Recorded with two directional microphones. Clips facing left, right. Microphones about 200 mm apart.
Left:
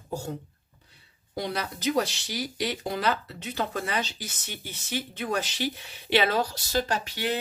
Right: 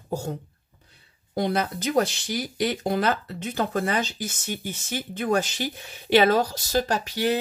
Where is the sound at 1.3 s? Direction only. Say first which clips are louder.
Right 7 dB; 50° right (ahead or behind).